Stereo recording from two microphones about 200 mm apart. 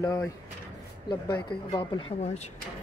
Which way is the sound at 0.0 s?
15° left (ahead or behind).